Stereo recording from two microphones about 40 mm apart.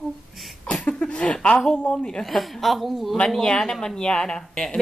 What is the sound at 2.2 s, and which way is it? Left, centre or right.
Speech, centre.